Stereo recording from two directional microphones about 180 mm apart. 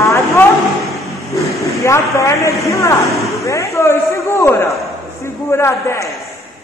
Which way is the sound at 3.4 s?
15° left (ahead or behind).